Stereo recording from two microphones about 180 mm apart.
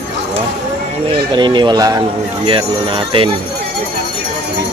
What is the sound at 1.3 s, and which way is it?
Speech, 25° right (ahead or behind).